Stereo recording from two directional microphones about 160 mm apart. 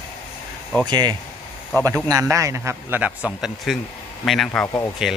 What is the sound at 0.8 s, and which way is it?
Speech, 25° right (ahead or behind).